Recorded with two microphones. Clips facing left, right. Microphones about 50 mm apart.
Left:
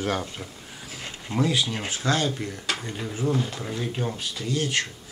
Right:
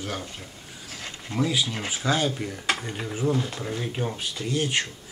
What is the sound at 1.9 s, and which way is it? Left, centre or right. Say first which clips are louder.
Speech: right 1 dB; centre.